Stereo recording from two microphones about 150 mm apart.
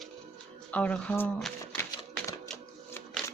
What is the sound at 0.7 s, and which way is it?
Speech, 10° left (ahead or behind).